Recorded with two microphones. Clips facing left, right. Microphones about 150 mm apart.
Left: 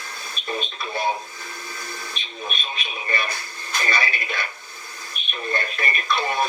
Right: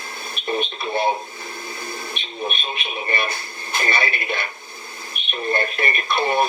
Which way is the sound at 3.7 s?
30° right (ahead or behind).